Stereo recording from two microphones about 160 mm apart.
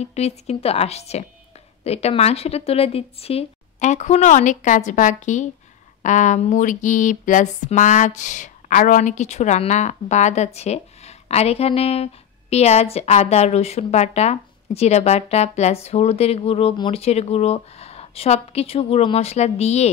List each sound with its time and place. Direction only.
0.0 s a woman's voice: 45° left (ahead or behind)